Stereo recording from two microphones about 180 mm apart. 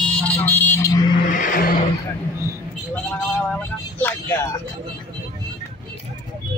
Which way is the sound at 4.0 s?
10° left (ahead or behind).